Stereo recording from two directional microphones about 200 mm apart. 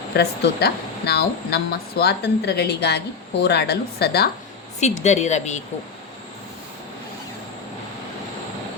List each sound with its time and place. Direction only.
0.2 s speech: 55° left (ahead or behind)
4.8 s a woman's voice: 35° left (ahead or behind)